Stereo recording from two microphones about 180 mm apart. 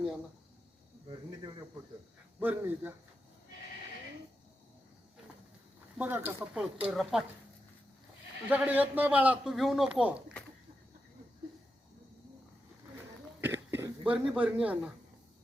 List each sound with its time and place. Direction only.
1.0 s speech: 25° right (ahead or behind)
2.4 s a man's voice: 10° right (ahead or behind)
6.0 s a man's voice: 10° right (ahead or behind)
8.4 s a man's voice: 10° right (ahead or behind)
13.4 s cough: 10° right (ahead or behind)
14.0 s a man's voice: 10° right (ahead or behind)